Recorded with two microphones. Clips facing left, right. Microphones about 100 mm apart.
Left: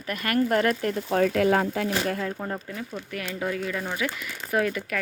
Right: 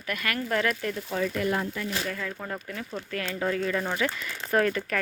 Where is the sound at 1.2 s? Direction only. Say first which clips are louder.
Left 7 dB; 75° left (ahead or behind).